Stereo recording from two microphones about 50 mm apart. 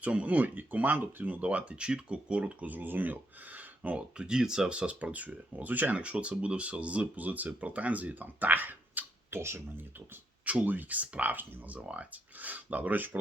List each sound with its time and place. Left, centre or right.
0.0 s speech: right
3.9 s speech: centre; by 9.0 s right
9.3 s speech: right
10.4 s speech: right